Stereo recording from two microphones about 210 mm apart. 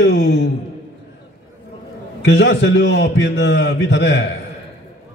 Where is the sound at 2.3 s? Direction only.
55° left (ahead or behind).